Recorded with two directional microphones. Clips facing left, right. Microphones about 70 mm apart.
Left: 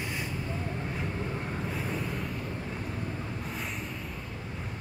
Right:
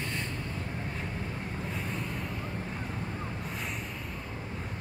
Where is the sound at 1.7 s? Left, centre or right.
Centre.